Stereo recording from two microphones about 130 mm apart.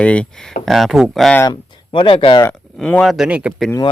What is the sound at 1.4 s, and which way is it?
Speech, 35° left (ahead or behind).